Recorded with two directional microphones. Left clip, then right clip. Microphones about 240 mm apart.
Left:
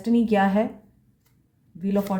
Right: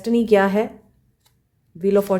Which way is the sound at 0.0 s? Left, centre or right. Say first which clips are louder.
Right 5 dB; right.